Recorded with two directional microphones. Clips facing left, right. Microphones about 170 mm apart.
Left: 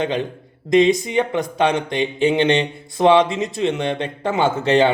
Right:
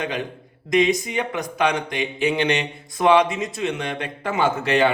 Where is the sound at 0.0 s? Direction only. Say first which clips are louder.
Left 5 dB; 25° left (ahead or behind).